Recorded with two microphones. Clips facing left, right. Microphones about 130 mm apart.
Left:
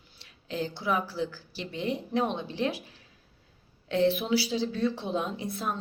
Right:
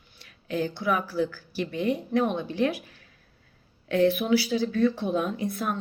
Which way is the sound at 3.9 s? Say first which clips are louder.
Right 3 dB; 25° left (ahead or behind).